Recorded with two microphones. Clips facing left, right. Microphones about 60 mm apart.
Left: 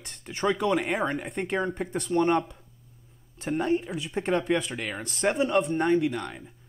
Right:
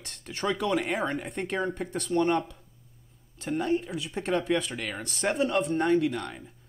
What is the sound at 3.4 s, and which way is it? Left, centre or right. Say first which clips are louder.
Speech: left 1 dB; centre.